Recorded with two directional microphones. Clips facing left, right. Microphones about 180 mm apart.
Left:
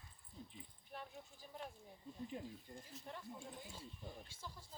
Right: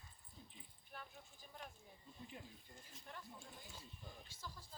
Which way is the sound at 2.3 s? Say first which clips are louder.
Left 8 dB; 30° left (ahead or behind).